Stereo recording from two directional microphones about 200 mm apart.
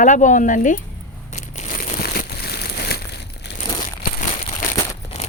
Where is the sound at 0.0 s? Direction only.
40° left (ahead or behind).